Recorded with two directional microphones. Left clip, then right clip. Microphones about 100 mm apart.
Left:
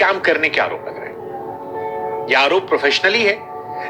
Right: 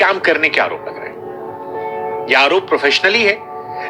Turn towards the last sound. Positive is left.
turn(degrees=-30)  # may be behind; listen again after turning